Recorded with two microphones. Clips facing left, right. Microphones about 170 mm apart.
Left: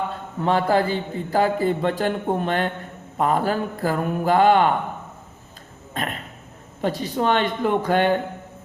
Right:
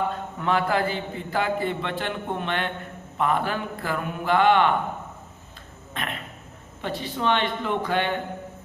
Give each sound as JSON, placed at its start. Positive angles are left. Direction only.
{"t": 0.3, "sound": "a man's voice", "side_deg": 35}
{"t": 5.9, "sound": "a sound", "side_deg": 40}
{"t": 6.8, "sound": "speech", "side_deg": 40}